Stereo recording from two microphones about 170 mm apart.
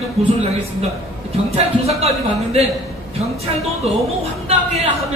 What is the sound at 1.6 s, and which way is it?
Speech, 40° right (ahead or behind).